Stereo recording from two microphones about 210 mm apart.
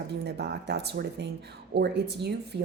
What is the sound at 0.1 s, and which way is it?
A woman's voice, 50° right (ahead or behind).